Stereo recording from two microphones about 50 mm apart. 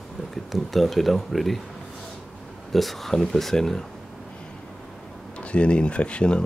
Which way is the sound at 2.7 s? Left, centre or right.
Centre.